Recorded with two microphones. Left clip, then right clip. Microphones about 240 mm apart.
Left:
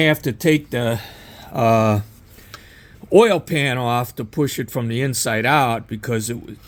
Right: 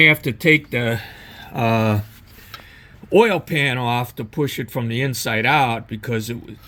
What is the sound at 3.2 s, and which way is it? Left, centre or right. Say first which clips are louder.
Speech: left 1 dB; centre.